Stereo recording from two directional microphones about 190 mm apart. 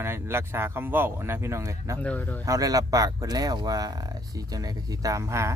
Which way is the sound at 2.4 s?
20° right (ahead or behind).